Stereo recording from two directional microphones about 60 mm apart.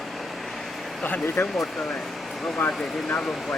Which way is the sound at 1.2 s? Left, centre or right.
Left.